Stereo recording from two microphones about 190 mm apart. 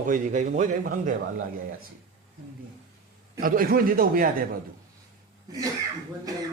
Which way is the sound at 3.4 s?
50° right (ahead or behind).